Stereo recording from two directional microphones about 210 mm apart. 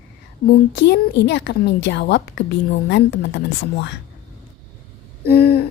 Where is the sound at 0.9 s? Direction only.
55° left (ahead or behind).